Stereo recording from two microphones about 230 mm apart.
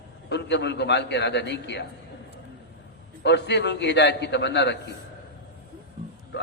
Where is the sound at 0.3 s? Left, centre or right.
Left.